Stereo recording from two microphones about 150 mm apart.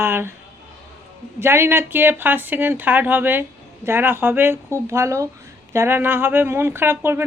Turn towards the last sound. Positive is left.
turn(degrees=-15)  # may be behind; listen again after turning